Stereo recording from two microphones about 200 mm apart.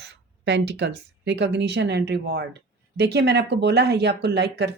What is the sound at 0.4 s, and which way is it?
Speech, 55° right (ahead or behind).